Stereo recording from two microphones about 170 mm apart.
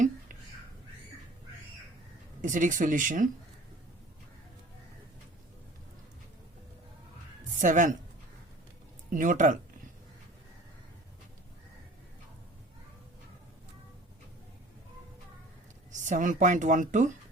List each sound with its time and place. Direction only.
2.4 s speech: 50° right (ahead or behind)
7.6 s speech: 50° right (ahead or behind)
9.0 s speech: 50° right (ahead or behind)
16.0 s speech: 50° right (ahead or behind)